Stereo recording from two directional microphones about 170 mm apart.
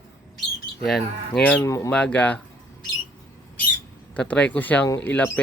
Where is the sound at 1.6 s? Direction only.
20° left (ahead or behind).